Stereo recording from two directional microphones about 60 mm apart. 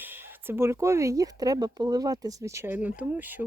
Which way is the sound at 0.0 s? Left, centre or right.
Right.